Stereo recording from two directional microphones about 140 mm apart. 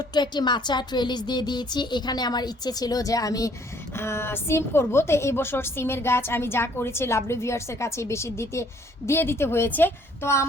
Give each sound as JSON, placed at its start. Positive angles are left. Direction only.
{"t": 0.0, "sound": "a woman's voice", "side_deg": 30}